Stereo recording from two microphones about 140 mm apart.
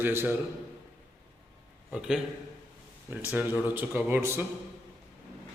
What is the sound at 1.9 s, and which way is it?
A man's voice, 5° right (ahead or behind).